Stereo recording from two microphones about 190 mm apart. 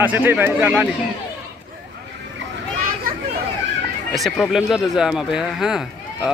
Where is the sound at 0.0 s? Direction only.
10° right (ahead or behind).